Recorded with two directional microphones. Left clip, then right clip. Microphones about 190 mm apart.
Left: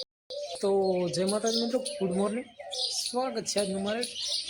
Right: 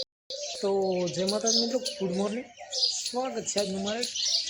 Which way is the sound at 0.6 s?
5° left (ahead or behind).